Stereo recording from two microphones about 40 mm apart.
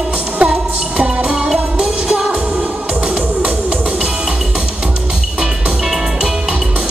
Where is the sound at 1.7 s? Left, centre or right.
Right.